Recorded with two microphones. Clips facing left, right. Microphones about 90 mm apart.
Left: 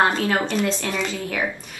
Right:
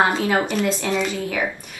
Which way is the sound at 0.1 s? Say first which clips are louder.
Right 1 dB; 15° right (ahead or behind).